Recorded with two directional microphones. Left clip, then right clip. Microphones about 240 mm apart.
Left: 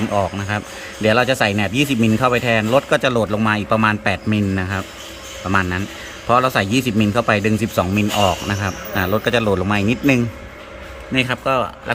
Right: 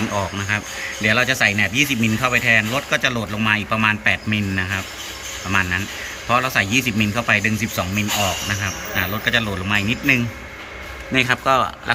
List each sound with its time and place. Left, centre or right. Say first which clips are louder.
0.1 s speech: left 2 dB; left
11.1 s speech: right 1 dB; centre